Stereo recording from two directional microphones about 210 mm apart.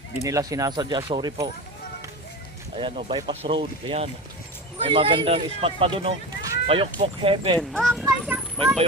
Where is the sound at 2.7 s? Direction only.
25° right (ahead or behind).